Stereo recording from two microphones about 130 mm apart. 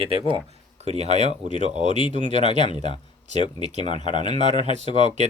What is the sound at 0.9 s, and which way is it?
Speech, 55° right (ahead or behind).